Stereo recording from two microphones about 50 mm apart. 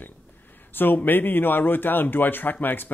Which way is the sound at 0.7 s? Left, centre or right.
Left.